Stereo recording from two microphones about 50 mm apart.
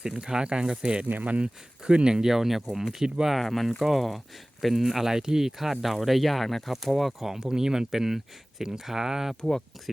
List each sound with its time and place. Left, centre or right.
0.0 s speech: centre
1.0 s speech: right
1.9 s speech: centre
3.3 s speech: centre
9.4 s speech: centre